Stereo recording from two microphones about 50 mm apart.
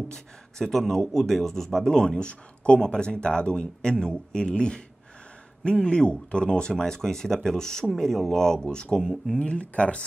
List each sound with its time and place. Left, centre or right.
0.1 s a man's voice: centre
9.3 s speech: left